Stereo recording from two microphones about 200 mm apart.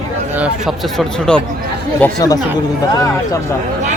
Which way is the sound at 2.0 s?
20° left (ahead or behind).